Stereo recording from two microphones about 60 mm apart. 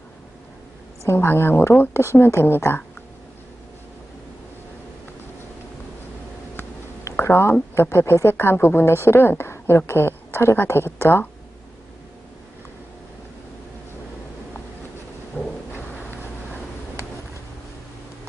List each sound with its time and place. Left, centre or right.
1.0 s a woman's voice: left
7.3 s a woman's voice: left